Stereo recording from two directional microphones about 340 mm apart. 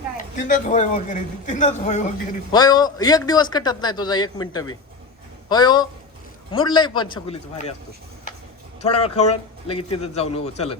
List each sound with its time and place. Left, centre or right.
0.3 s a man's voice: left
8.8 s a man's voice: centre